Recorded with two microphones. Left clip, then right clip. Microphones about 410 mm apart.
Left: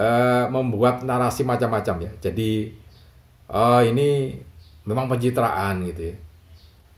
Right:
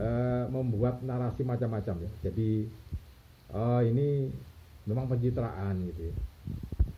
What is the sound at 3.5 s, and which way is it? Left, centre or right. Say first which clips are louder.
Speech: left 14 dB; centre.